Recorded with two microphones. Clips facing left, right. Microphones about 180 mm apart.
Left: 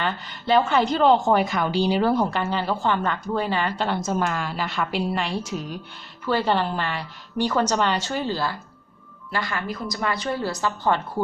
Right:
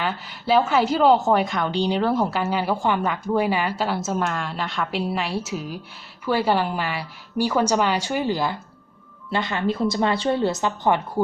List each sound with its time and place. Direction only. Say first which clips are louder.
0.0 s a woman's voice: even; 5° right (ahead or behind)